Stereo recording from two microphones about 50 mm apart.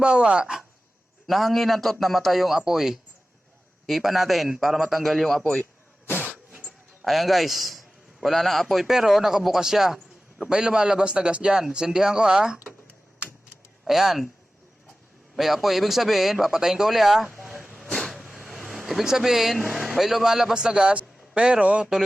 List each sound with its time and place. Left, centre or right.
0.0 s speech: centre
1.3 s speech: centre
7.0 s a man's voice: centre
13.8 s speech: centre
15.4 s speech: centre
17.8 s vehicle: centre
18.1 s a sound: centre
19.7 s a man's voice: centre; by 21.8 s right